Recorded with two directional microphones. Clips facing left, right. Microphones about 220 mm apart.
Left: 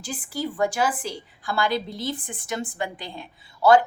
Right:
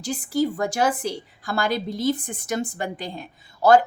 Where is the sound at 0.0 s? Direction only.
40° right (ahead or behind).